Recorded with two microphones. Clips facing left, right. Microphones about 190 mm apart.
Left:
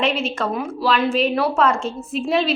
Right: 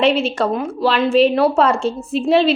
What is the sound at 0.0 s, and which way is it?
A woman's voice, 30° right (ahead or behind).